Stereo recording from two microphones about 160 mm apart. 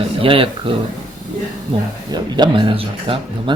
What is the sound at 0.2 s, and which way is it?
Speech, 35° right (ahead or behind).